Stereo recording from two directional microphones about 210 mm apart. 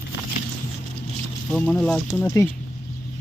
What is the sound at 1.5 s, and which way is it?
Speech, 5° left (ahead or behind).